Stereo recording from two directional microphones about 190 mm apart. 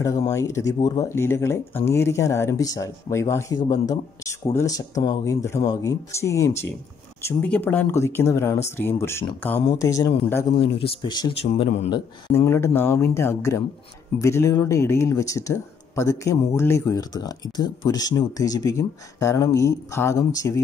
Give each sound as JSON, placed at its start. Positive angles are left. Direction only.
{"t": 0.3, "sound": "speech", "side_deg": 15}
{"t": 12.4, "sound": "speech", "side_deg": 15}